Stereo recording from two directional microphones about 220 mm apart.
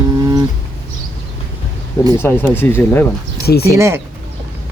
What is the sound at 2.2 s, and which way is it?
Speech, 10° left (ahead or behind).